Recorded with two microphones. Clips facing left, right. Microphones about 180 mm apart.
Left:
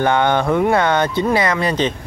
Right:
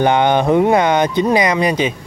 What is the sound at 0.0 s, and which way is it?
Speech, 20° right (ahead or behind).